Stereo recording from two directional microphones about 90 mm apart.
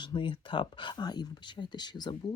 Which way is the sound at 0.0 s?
65° left (ahead or behind).